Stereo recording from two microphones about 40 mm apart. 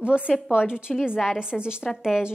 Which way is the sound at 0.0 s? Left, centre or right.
Right.